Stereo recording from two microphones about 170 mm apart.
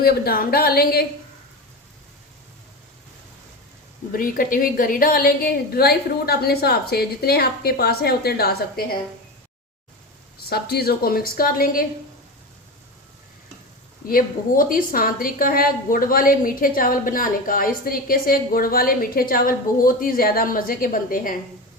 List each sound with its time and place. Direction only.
0.0 s a woman's voice: 60° left (ahead or behind)
4.1 s a woman's voice: 55° left (ahead or behind)
10.5 s a woman's voice: 65° left (ahead or behind)
14.1 s a woman's voice: 55° left (ahead or behind)